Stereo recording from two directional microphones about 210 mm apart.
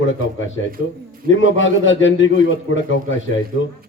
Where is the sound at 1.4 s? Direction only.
65° left (ahead or behind).